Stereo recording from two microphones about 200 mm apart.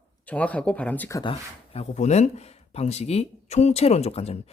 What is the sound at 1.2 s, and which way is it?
Speech, 30° left (ahead or behind).